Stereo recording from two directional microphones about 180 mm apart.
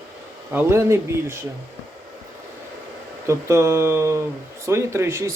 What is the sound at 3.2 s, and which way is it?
Speech, 15° right (ahead or behind).